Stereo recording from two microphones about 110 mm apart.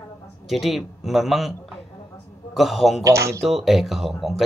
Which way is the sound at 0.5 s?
Centre (ahead or behind).